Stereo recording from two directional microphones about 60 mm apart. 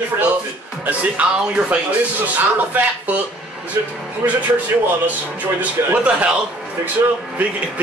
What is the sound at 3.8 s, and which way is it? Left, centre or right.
Speech, right.